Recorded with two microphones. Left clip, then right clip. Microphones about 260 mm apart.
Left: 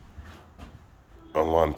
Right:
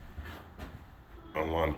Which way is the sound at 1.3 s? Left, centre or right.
Left.